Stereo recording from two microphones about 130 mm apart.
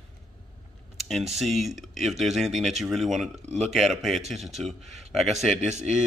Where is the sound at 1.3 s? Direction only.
Centre (ahead or behind).